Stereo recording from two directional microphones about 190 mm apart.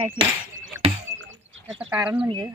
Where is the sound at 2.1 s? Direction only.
25° right (ahead or behind).